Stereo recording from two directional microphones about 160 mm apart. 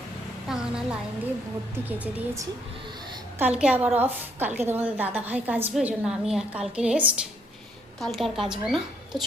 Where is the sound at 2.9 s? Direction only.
30° right (ahead or behind).